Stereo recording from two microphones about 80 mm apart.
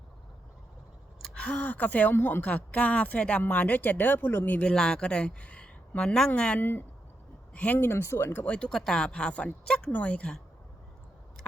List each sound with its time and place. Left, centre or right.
1.4 s speech: centre
4.6 s speech: centre
6.6 s speech: left
7.8 s speech: left; by 10.4 s centre